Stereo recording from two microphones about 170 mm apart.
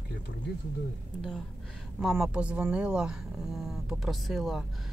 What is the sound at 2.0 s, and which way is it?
Speech, centre (ahead or behind).